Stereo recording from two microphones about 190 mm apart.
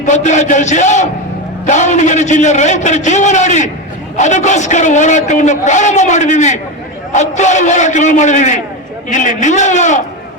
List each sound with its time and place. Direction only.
0.0 s a man's voice: 40° left (ahead or behind)